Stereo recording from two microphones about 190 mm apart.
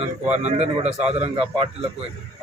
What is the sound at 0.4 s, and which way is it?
Speech, 35° right (ahead or behind).